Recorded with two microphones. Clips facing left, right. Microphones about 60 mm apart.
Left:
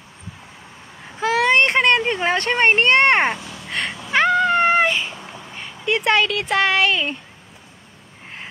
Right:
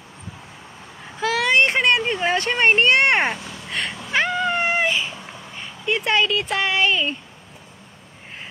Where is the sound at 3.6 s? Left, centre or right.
Left.